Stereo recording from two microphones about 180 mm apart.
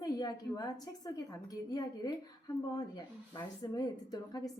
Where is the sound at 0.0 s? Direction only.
20° left (ahead or behind).